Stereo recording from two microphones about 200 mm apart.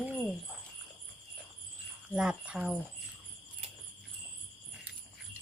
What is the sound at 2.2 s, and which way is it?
Speech, 5° right (ahead or behind).